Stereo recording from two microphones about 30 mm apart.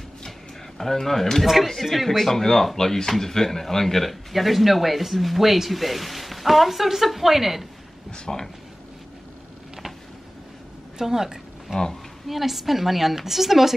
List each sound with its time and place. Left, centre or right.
0.7 s speech: centre
1.4 s speech: centre
2.0 s speech: centre
8.3 s speech: centre
11.0 s a woman's voice: centre
12.3 s a woman's voice: centre